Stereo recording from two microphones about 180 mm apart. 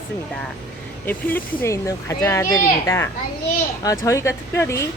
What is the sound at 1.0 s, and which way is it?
Speech, 15° left (ahead or behind).